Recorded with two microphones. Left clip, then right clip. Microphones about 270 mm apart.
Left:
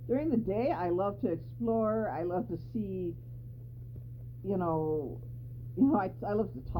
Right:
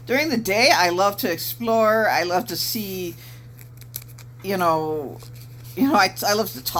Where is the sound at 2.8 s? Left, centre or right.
Right.